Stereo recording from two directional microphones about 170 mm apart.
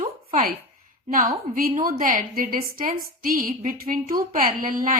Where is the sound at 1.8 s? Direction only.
55° right (ahead or behind).